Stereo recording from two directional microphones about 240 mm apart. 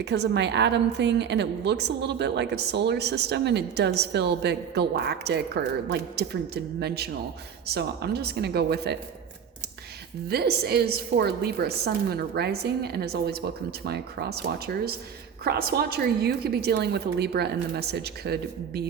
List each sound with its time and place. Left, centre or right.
0.0 s a woman's voice: right
10.2 s a woman's voice: right